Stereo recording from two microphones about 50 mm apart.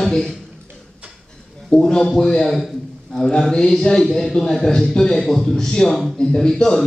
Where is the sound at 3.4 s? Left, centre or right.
Centre.